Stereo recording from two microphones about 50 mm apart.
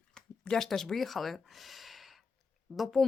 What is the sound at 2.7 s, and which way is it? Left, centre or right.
Speech, right.